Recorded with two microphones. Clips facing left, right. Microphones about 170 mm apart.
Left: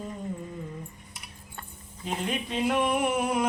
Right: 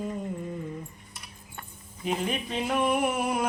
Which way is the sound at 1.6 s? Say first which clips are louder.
Right 1 dB; 10° right (ahead or behind).